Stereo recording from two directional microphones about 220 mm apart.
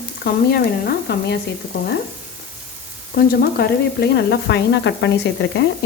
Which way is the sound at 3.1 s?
45° left (ahead or behind).